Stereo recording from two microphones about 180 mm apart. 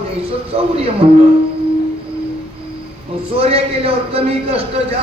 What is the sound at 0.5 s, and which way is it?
Speech, 30° right (ahead or behind).